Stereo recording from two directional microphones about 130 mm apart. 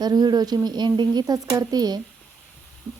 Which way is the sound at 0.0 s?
30° right (ahead or behind).